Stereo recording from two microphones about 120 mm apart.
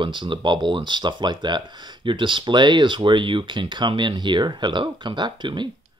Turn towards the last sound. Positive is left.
turn(degrees=-40)  # may be behind; listen again after turning